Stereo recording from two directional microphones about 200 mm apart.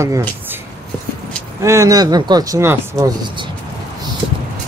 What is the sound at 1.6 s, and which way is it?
Speech, 15° right (ahead or behind).